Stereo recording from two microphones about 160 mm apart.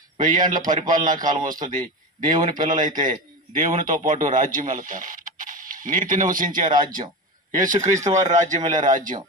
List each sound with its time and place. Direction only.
0.2 s a man's voice: 55° right (ahead or behind)
8.0 s speech: 20° right (ahead or behind)
8.7 s speech: 55° right (ahead or behind)